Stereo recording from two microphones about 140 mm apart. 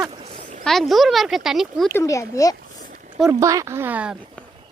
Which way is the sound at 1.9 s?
20° left (ahead or behind).